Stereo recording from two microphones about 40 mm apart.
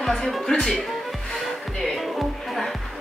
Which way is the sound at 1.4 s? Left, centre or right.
Centre.